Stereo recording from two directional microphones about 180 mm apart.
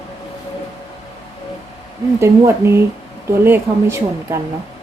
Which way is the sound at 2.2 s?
15° right (ahead or behind).